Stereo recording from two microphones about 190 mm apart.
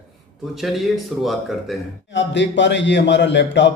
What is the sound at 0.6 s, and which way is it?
Speech, centre (ahead or behind).